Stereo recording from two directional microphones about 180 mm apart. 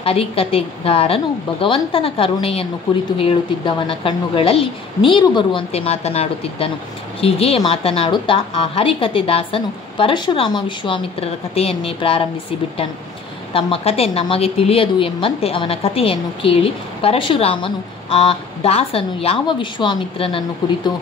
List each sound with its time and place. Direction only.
0.0 s speech: 30° left (ahead or behind)
13.5 s speech: 30° left (ahead or behind)